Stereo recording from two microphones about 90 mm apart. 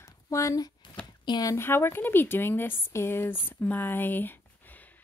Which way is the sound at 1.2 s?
50° left (ahead or behind).